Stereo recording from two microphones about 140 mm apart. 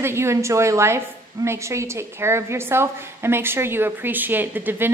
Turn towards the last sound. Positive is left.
turn(degrees=-15)  # may be behind; listen again after turning